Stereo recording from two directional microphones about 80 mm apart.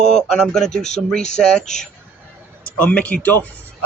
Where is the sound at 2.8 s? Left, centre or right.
Centre.